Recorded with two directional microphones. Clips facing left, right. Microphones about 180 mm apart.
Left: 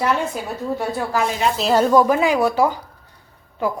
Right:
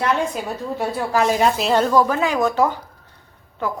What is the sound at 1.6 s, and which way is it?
A woman's voice, 5° left (ahead or behind).